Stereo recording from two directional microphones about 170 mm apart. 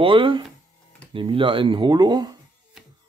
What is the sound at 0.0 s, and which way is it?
Speech, 30° right (ahead or behind).